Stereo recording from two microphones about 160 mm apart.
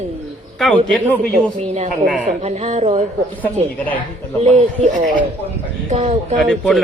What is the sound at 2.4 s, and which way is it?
Speech, 45° right (ahead or behind).